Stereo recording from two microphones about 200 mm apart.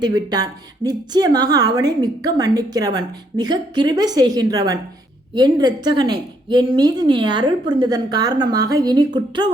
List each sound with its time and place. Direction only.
0.0 s a woman's voice: 20° right (ahead or behind)